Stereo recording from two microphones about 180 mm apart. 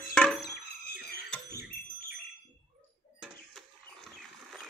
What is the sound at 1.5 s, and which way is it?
Fire alarm, 60° left (ahead or behind).